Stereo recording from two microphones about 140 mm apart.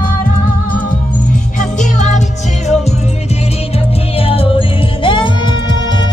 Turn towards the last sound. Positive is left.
turn(degrees=30)  # may be behind; listen again after turning